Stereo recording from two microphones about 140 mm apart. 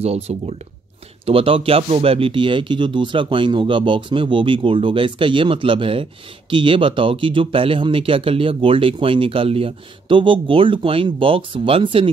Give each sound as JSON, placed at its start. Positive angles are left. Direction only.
{"t": 0.0, "sound": "speech", "side_deg": -45}